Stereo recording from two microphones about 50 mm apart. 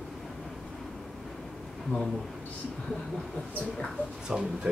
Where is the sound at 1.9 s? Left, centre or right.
Left.